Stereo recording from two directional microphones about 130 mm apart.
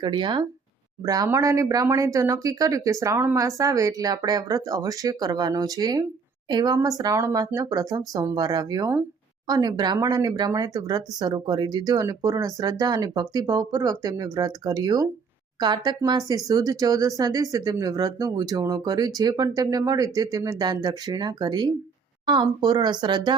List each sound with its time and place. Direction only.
0.0 s speech: 35° right (ahead or behind)